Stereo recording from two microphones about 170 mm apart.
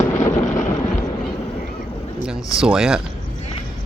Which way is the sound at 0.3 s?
20° left (ahead or behind).